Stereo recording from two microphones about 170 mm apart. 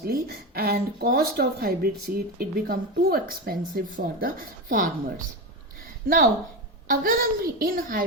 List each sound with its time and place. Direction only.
0.0 s speech: 70° right (ahead or behind); by 5.2 s 50° right (ahead or behind)
6.9 s speech: 55° right (ahead or behind)